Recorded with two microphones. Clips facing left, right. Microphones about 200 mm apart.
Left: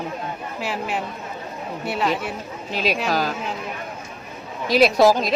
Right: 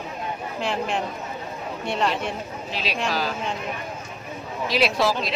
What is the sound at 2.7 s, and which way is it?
Speech, 45° left (ahead or behind).